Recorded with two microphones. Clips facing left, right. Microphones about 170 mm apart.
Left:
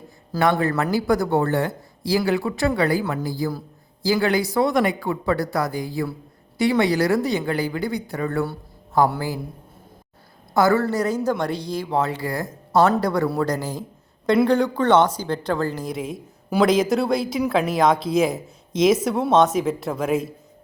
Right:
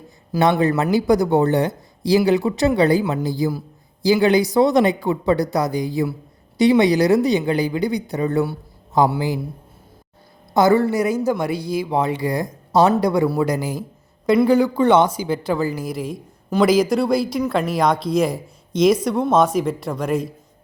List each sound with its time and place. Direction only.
0.5 s speech: 15° right (ahead or behind)
10.5 s speech: 20° right (ahead or behind); by 20.3 s centre (ahead or behind)